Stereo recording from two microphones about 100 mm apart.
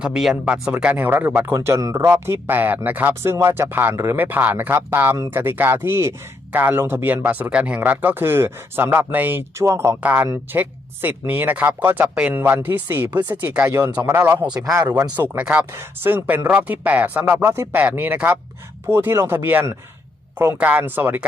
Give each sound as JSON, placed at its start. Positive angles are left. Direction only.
{"t": 0.0, "sound": "speech", "side_deg": -5}
{"t": 1.5, "sound": "a man's voice", "side_deg": -30}
{"t": 15.1, "sound": "speech", "side_deg": -15}
{"t": 18.9, "sound": "speech", "side_deg": -25}